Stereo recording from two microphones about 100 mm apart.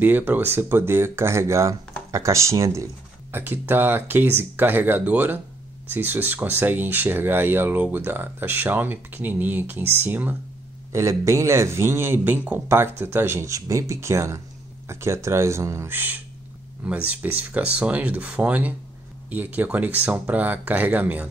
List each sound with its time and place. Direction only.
0.0 s speech: 20° right (ahead or behind)
10.9 s speech: 30° right (ahead or behind)